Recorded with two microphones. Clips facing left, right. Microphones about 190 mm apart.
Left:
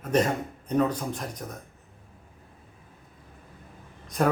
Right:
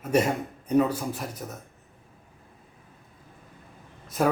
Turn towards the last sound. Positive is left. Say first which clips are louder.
# even
turn(degrees=-5)  # may be behind; listen again after turning